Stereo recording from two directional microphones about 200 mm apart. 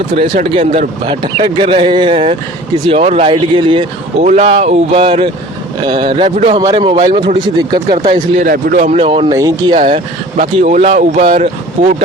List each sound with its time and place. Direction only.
0.2 s speech: 30° right (ahead or behind)
8.4 s speech: 45° right (ahead or behind); by 9.7 s 20° right (ahead or behind)
9.8 s speech: 30° right (ahead or behind)